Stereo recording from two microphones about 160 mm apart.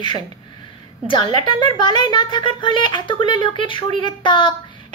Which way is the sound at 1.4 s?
30° left (ahead or behind).